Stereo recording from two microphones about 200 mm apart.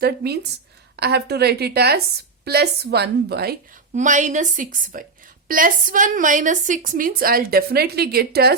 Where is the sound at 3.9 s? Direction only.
40° right (ahead or behind).